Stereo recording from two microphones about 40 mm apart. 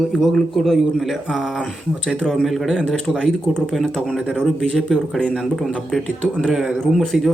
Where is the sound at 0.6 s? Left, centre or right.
Centre.